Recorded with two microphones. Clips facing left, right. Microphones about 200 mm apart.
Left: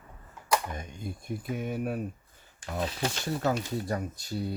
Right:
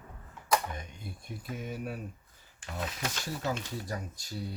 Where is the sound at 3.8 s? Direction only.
60° left (ahead or behind).